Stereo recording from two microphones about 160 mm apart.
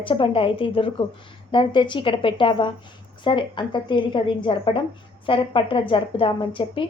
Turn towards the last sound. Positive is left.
turn(degrees=30)  # may be behind; listen again after turning